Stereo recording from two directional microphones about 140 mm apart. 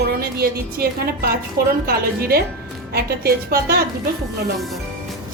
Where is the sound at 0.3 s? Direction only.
90° right.